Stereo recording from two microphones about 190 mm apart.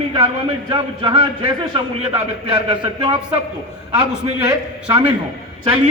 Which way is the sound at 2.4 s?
30° right (ahead or behind).